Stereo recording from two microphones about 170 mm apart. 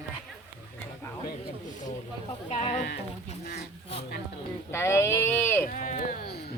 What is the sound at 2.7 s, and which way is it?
Speech, 65° left (ahead or behind).